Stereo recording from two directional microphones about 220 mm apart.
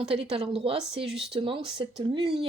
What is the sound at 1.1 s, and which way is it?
Speech, centre (ahead or behind).